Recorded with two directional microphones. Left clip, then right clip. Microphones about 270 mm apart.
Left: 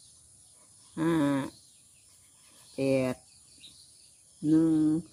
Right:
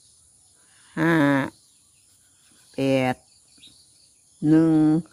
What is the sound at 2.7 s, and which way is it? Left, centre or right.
Cricket, right.